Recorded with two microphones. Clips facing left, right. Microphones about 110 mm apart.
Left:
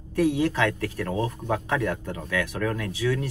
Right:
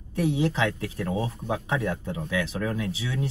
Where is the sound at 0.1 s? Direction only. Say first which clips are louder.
Left 3 dB; 20° right (ahead or behind).